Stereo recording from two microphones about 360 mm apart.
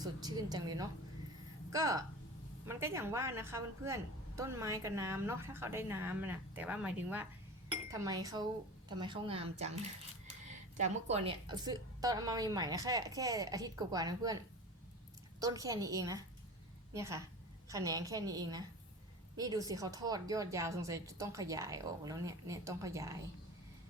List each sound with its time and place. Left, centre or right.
0.0 s a woman's voice: centre
10.8 s a woman's voice: centre
15.4 s a woman's voice: centre